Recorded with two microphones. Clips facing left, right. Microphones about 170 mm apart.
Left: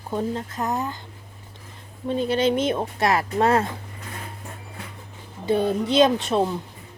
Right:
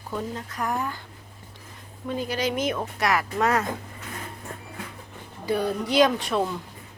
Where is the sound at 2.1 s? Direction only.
25° left (ahead or behind).